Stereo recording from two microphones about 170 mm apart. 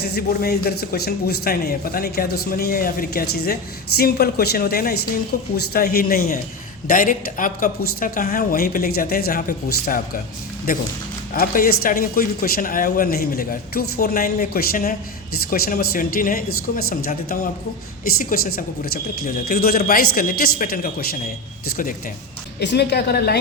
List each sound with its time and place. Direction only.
0.0 s speech: 70° left (ahead or behind)
11.3 s speech: 60° left (ahead or behind)
22.6 s a woman's voice: 80° left